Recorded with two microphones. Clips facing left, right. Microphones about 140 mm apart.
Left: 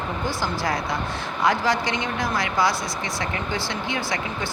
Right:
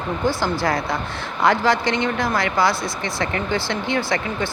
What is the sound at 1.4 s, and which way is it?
A woman's voice, 60° right (ahead or behind).